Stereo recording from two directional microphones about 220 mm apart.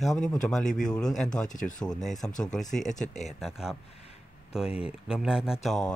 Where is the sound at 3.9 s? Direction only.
25° left (ahead or behind).